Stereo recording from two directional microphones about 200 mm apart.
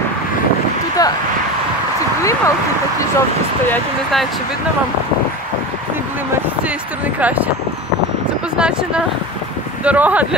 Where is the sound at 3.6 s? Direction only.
Centre (ahead or behind).